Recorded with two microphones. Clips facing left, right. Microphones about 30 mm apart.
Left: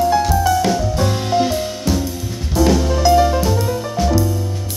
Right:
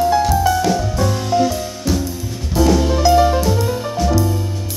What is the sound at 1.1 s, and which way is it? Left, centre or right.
Music, left.